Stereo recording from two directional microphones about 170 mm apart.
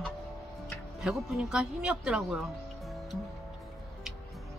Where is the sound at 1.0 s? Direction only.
5° right (ahead or behind).